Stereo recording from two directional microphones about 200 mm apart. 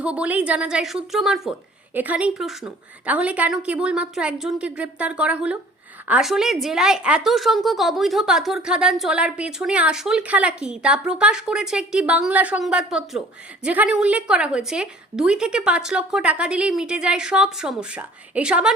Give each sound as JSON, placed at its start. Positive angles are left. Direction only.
{"t": 0.0, "sound": "a woman's voice", "side_deg": -5}